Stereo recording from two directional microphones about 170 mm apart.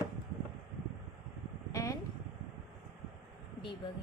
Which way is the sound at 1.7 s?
20° left (ahead or behind).